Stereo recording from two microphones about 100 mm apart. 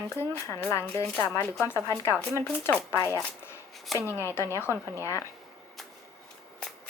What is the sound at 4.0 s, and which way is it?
Speech, 25° left (ahead or behind).